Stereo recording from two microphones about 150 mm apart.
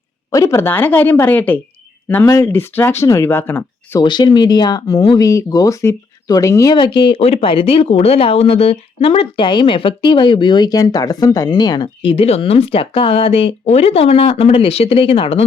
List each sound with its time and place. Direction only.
0.3 s speech: 20° left (ahead or behind)
4.0 s speech: 30° left (ahead or behind)
6.7 s speech: 35° left (ahead or behind)